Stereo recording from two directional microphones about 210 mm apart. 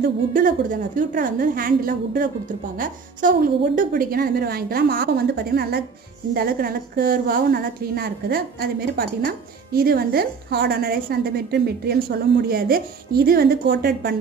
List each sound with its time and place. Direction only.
0.0 s a woman's voice: 40° right (ahead or behind)